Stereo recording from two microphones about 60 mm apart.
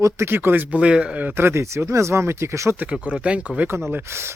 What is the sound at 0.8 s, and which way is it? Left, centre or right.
Speech, centre.